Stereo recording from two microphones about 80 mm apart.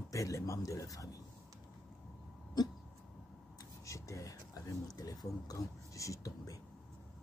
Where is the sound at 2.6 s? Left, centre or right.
Left.